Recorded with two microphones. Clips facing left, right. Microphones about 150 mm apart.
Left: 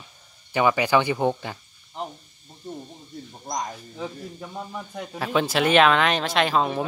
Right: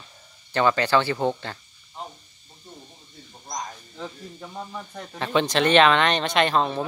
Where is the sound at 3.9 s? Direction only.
5° left (ahead or behind).